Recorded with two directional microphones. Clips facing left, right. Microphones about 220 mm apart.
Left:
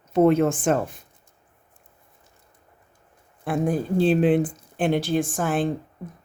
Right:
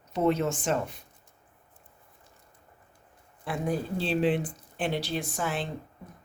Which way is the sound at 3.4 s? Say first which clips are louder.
Left 6 dB; 50° left (ahead or behind).